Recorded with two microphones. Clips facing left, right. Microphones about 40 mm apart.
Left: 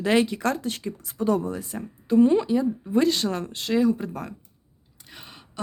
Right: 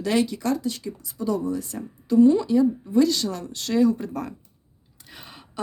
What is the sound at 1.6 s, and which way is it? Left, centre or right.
Speech, left.